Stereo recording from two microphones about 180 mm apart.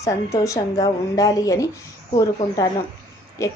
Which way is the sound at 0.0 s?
20° left (ahead or behind).